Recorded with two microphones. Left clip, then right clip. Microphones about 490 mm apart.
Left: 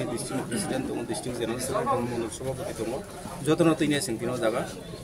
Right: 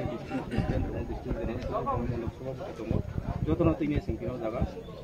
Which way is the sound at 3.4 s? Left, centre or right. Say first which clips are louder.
Left 5 dB; right.